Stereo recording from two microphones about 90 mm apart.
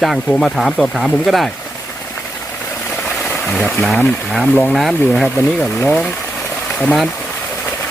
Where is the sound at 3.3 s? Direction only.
15° left (ahead or behind).